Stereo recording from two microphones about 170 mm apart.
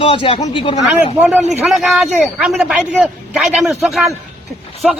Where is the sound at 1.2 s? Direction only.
5° right (ahead or behind).